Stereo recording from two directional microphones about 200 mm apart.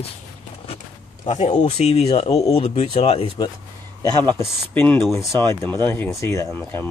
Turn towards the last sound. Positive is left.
turn(degrees=10)  # may be behind; listen again after turning